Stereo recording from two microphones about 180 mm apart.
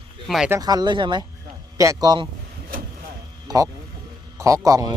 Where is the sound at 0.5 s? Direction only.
20° right (ahead or behind).